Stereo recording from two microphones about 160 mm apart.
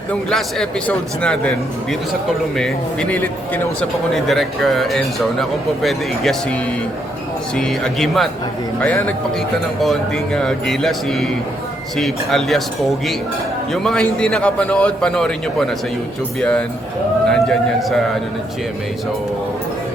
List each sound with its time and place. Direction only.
0.1 s a man's voice: 5° left (ahead or behind)
13.8 s a man's voice: 5° left (ahead or behind)